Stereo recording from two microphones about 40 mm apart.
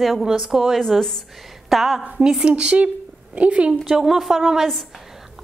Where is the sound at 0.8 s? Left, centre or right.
Centre.